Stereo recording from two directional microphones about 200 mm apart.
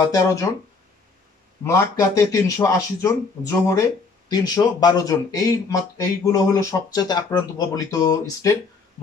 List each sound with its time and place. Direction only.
0.1 s speech: 15° left (ahead or behind)
1.7 s speech: 15° left (ahead or behind)